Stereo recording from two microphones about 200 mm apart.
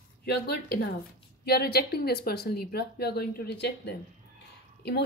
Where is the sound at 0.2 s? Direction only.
50° left (ahead or behind).